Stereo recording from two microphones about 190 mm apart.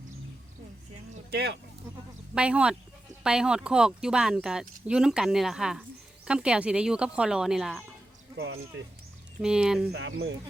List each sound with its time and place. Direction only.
1.3 s speech: 60° right (ahead or behind)
2.3 s speech: 5° right (ahead or behind)
9.4 s speech: 5° right (ahead or behind)
9.9 s speech: 65° right (ahead or behind)